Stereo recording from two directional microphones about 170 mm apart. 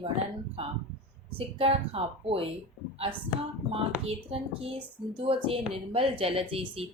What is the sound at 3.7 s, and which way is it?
A woman's voice, 35° right (ahead or behind).